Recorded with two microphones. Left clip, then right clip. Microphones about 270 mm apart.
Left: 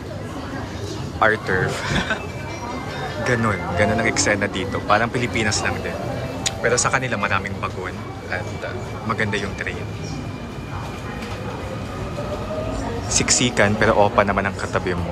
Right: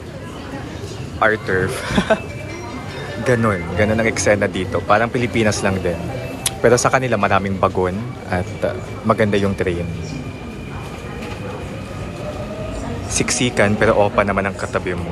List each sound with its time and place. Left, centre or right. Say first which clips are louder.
1.2 s speech: right 2 dB; centre
3.3 s speech: right 4 dB; centre
13.1 s speech: even; centre